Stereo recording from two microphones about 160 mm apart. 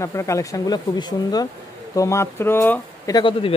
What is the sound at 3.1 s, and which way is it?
Speech, 30° left (ahead or behind).